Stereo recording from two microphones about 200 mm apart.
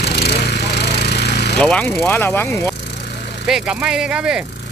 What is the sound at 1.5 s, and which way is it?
Speech, 5° left (ahead or behind).